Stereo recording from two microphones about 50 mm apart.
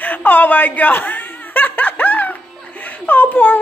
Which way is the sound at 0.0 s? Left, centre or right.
Left.